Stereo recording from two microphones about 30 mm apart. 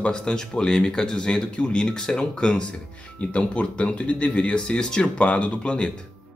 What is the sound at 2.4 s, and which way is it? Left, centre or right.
Speech, left.